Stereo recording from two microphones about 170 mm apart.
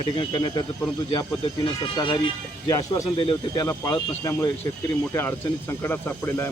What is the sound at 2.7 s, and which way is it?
Speech, 20° left (ahead or behind).